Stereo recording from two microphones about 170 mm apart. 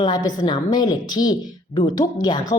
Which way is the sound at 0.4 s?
25° left (ahead or behind).